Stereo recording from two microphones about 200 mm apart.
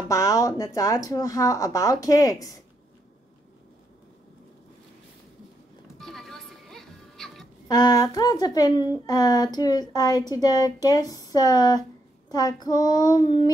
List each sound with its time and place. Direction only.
0.1 s speech: 15° left (ahead or behind)
5.9 s music: centre (ahead or behind)
7.6 s speech: 20° left (ahead or behind)